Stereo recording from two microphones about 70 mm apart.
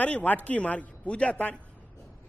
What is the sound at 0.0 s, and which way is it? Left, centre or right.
A man's voice, left.